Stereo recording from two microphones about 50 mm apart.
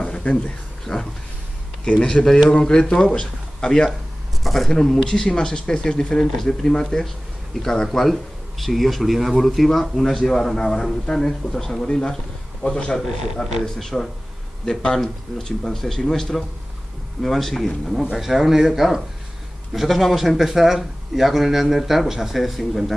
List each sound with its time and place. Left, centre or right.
0.0 s roaring cats: centre
0.9 s speech: centre
4.4 s a man's voice: centre
13.4 s a man's voice: centre
14.7 s a man's voice: centre